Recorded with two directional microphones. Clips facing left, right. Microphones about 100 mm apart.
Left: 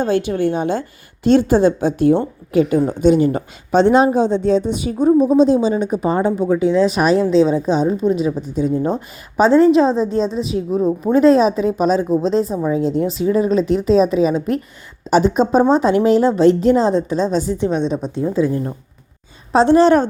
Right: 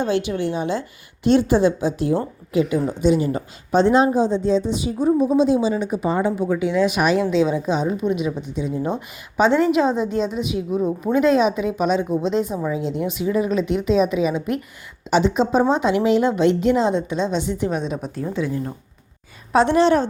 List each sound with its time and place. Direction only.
0.0 s a woman's voice: 45° left (ahead or behind)
3.7 s a woman's voice: 70° left (ahead or behind); by 18.2 s 30° left (ahead or behind)
18.3 s a woman's voice: 40° left (ahead or behind)